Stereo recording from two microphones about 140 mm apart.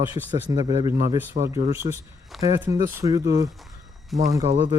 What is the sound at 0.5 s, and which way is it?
Speech, 30° right (ahead or behind).